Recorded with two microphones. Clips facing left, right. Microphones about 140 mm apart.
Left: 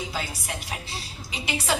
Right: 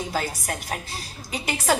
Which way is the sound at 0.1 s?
45° right (ahead or behind).